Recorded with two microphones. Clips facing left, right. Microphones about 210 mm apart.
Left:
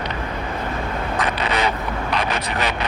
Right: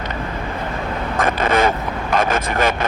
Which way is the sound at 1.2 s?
50° right (ahead or behind).